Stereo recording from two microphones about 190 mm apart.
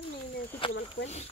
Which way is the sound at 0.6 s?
30° left (ahead or behind).